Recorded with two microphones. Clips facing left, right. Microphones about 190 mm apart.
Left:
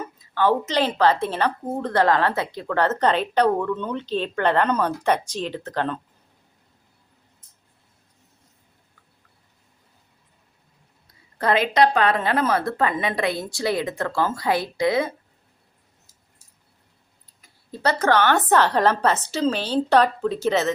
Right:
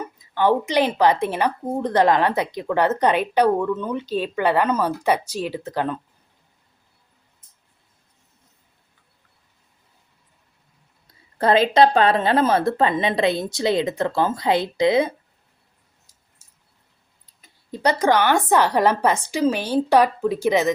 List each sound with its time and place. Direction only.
0.0 s speech: 15° right (ahead or behind)
11.3 s a woman's voice: 30° right (ahead or behind)
17.4 s speech: 15° right (ahead or behind)